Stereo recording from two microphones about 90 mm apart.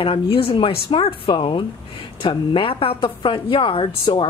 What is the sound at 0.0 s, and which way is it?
Speech, 85° left.